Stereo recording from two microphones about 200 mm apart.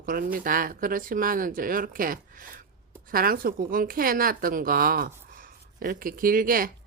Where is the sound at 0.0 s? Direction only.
45° right (ahead or behind).